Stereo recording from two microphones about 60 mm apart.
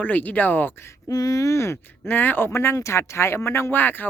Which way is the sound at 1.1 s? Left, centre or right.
Left.